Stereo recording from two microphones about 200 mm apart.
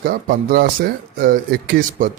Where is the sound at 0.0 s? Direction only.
45° right (ahead or behind).